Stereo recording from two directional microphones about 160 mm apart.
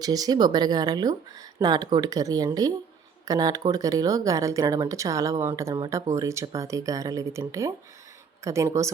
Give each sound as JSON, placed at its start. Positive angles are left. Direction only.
{"t": 0.0, "sound": "speech", "side_deg": -25}